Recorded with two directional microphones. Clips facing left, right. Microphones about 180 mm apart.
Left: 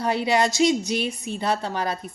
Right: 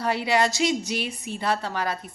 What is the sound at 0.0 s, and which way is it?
A woman's voice, 20° left (ahead or behind).